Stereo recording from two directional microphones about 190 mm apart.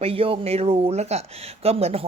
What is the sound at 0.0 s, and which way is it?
Speech, 30° right (ahead or behind).